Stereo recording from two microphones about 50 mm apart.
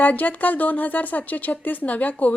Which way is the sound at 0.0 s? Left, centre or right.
Left.